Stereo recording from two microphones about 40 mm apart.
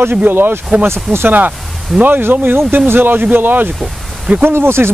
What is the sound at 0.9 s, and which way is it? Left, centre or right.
Speech, right.